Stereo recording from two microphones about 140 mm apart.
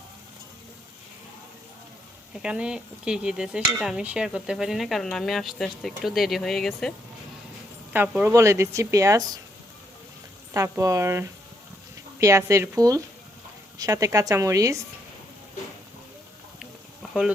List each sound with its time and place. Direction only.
2.4 s dishes: 5° right (ahead or behind)
7.9 s a woman's voice: 15° right (ahead or behind)
10.5 s a woman's voice: 25° right (ahead or behind)
16.6 s a sound: 5° right (ahead or behind)